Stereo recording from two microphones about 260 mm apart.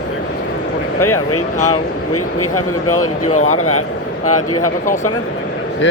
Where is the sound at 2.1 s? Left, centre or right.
Left.